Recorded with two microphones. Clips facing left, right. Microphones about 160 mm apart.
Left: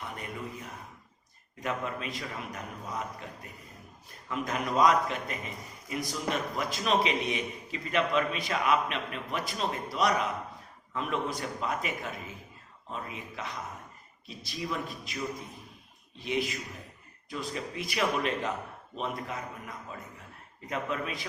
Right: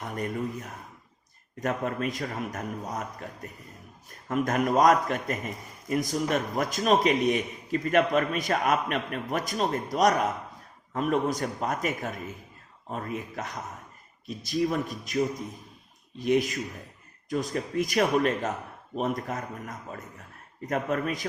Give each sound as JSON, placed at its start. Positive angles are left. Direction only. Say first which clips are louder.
{"t": 0.0, "sound": "a man's voice", "louder": "right 8 dB", "side_deg": -45}
{"t": 16.2, "sound": "a man's voice", "louder": "right 7 dB", "side_deg": -45}